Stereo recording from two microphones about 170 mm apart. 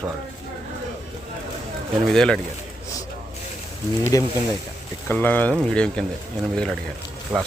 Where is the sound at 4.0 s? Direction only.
20° left (ahead or behind).